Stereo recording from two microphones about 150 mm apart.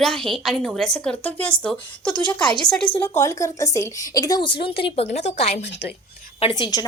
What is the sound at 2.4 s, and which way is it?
Speech, 30° left (ahead or behind).